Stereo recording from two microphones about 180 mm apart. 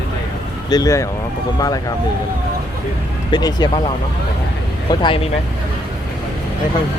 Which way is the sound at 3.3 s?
20° left (ahead or behind).